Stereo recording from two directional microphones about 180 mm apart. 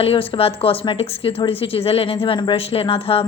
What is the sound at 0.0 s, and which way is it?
A woman's voice, 30° left (ahead or behind).